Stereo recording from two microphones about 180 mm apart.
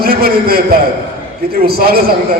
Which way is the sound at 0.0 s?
55° right (ahead or behind).